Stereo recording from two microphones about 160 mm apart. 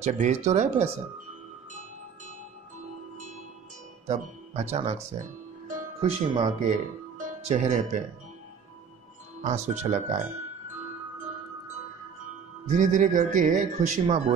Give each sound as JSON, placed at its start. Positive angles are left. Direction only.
{"t": 0.0, "sound": "speech", "side_deg": -45}
{"t": 4.1, "sound": "speech", "side_deg": -40}
{"t": 9.4, "sound": "speech", "side_deg": -50}
{"t": 12.6, "sound": "speech", "side_deg": -50}
{"t": 14.0, "sound": "speech", "side_deg": -35}